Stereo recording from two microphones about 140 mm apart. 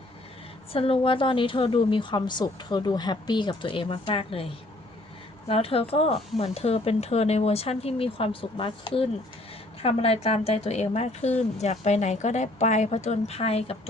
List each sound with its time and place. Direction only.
0.7 s a woman's voice: 40° left (ahead or behind)
5.5 s a woman's voice: 45° left (ahead or behind)